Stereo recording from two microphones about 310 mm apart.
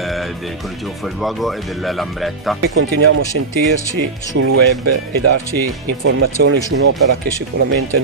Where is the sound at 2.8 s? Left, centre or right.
Right.